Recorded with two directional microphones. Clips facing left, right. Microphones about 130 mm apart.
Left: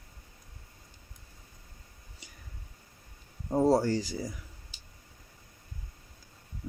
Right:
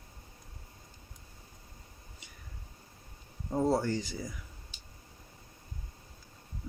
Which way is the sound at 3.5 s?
35° left (ahead or behind).